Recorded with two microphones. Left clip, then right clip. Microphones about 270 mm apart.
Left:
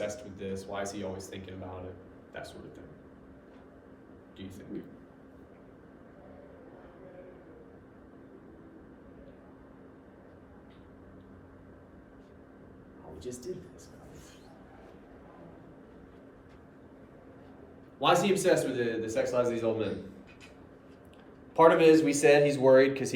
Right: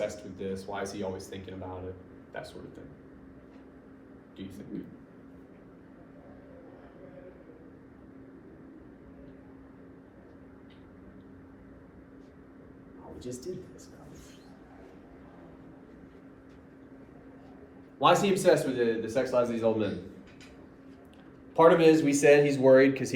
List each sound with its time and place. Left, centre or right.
0.0 s a man's voice: centre
13.1 s speech: centre
18.0 s a man's voice: centre
21.5 s a man's voice: centre